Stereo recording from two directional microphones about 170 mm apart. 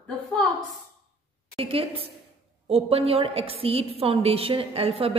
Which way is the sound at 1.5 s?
35° right (ahead or behind).